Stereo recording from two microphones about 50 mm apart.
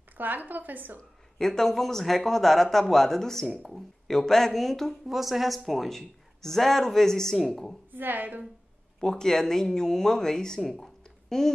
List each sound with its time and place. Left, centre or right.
0.2 s a woman's voice: right
1.4 s a man's voice: centre
7.9 s a woman's voice: right
9.0 s a man's voice: centre
10.7 s a sound: centre